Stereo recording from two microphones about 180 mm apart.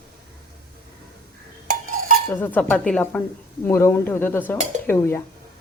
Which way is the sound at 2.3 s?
10° left (ahead or behind).